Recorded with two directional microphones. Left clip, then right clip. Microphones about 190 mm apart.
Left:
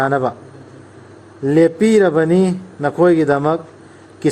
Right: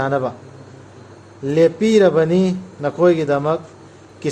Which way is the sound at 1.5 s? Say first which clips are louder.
Left 2 dB; 40° left (ahead or behind).